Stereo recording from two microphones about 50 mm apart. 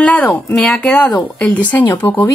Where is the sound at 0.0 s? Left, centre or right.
Left.